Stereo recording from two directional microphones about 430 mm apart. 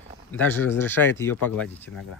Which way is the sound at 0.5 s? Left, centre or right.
Centre.